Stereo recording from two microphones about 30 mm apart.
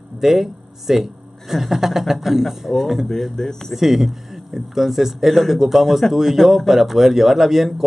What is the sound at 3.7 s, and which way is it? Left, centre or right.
Speech, centre.